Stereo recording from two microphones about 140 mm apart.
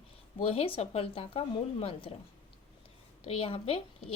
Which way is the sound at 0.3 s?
45° left (ahead or behind).